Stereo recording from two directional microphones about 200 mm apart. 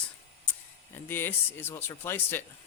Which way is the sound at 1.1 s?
10° left (ahead or behind).